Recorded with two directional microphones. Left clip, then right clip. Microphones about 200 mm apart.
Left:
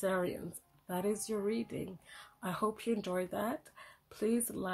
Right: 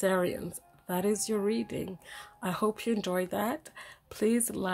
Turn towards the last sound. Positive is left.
turn(degrees=-35)  # may be behind; listen again after turning